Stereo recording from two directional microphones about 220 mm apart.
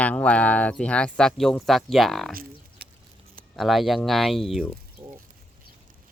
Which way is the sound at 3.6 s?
Centre (ahead or behind).